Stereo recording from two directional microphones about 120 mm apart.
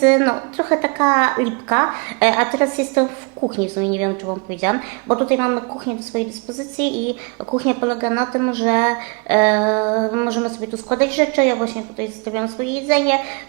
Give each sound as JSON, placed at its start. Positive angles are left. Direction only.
{"t": 0.0, "sound": "a woman's voice", "side_deg": -25}
{"t": 7.5, "sound": "speech", "side_deg": -30}
{"t": 12.9, "sound": "speech", "side_deg": -25}